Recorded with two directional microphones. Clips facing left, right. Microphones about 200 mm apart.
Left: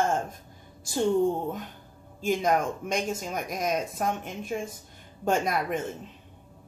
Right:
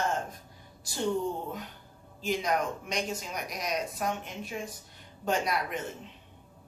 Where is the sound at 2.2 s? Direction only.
50° left (ahead or behind).